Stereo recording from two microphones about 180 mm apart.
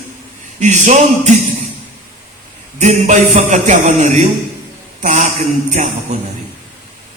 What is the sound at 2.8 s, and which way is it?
Music, 45° right (ahead or behind).